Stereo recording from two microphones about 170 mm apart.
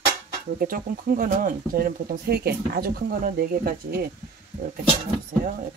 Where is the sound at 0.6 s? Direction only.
55° right (ahead or behind).